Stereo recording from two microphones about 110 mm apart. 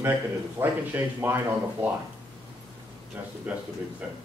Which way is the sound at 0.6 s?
20° right (ahead or behind).